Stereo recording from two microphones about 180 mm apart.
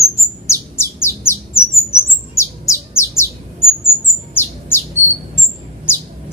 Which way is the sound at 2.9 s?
15° left (ahead or behind).